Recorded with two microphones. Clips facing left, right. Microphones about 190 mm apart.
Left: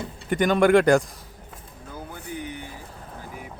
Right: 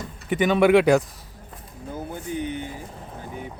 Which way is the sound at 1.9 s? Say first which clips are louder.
Right 5 dB; 20° right (ahead or behind).